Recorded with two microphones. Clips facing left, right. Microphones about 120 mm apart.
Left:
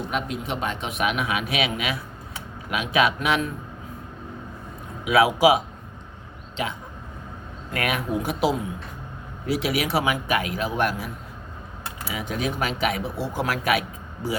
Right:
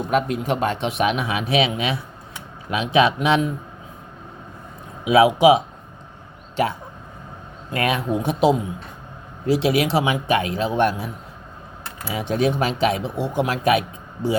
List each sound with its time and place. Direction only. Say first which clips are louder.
0.1 s speech: right 10 dB; 45° right (ahead or behind); by 3.5 s 25° right (ahead or behind)
5.0 s speech: right 4 dB; 25° right (ahead or behind)
7.7 s speech: right 4 dB; 30° right (ahead or behind)
12.1 s speech: right 7 dB; 35° right (ahead or behind)